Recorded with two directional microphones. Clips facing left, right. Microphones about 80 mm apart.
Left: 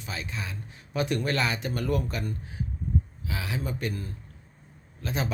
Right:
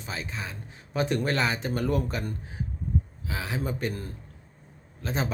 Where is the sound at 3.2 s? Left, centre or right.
Right.